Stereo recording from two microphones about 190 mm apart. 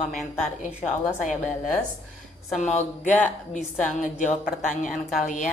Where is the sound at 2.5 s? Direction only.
40° left (ahead or behind).